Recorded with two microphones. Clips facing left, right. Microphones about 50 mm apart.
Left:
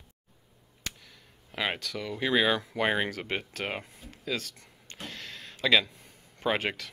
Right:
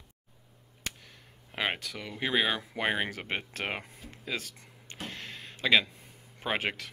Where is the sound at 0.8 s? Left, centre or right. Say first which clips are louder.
Even; right.